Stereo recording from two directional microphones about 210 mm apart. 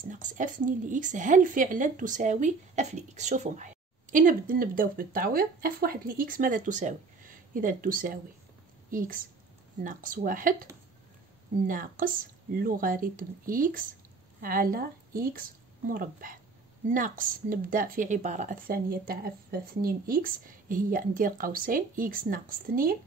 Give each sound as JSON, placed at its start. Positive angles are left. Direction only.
{"t": 0.1, "sound": "a woman's voice", "side_deg": -40}